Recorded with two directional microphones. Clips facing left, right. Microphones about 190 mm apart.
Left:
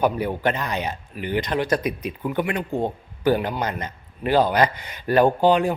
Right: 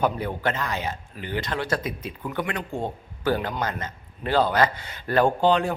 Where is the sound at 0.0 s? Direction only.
10° left (ahead or behind).